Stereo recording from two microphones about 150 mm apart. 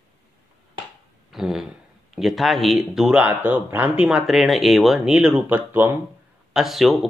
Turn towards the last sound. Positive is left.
turn(degrees=0)  # may be behind; listen again after turning